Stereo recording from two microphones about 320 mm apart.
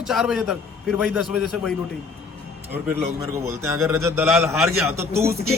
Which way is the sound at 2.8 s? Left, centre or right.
Centre.